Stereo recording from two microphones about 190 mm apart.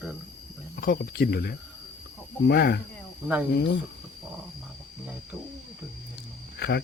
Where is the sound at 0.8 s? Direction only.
50° left (ahead or behind).